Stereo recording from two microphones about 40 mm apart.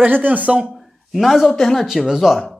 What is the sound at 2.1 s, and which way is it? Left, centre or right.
Speech, centre.